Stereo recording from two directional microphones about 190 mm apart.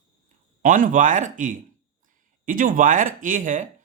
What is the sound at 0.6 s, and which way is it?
Speech, 45° right (ahead or behind).